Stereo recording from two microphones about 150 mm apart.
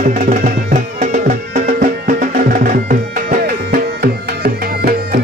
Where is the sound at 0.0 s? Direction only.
60° right (ahead or behind).